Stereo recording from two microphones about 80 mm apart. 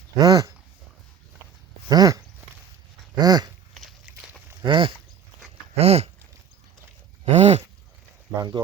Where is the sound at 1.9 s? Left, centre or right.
Right.